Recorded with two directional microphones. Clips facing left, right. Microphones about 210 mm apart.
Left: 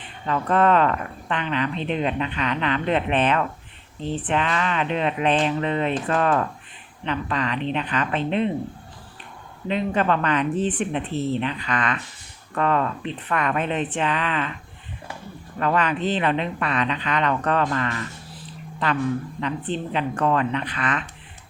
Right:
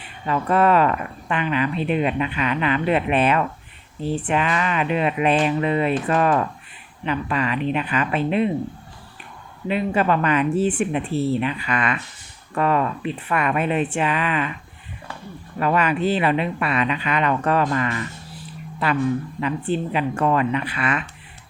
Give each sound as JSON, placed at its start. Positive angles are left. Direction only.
{"t": 0.0, "sound": "speech", "side_deg": -10}
{"t": 9.6, "sound": "speech", "side_deg": -5}
{"t": 15.5, "sound": "speech", "side_deg": -10}